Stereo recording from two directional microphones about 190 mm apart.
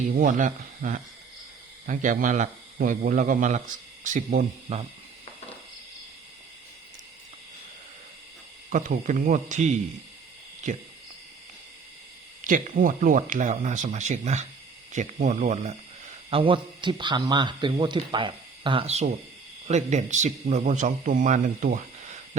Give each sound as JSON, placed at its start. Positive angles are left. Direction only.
{"t": 0.1, "sound": "a man's voice", "side_deg": -45}
{"t": 8.7, "sound": "a man's voice", "side_deg": -40}
{"t": 12.5, "sound": "a man's voice", "side_deg": -45}
{"t": 16.3, "sound": "a man's voice", "side_deg": -25}